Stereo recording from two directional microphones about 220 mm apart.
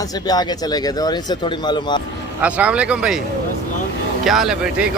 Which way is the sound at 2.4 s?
5° right (ahead or behind).